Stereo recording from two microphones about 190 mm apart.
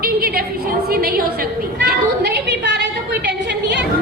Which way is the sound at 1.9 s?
65° right (ahead or behind).